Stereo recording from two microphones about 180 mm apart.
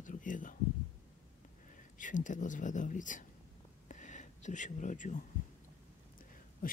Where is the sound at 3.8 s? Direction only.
45° left (ahead or behind).